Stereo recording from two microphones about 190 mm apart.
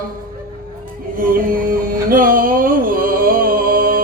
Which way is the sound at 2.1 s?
50° right (ahead or behind).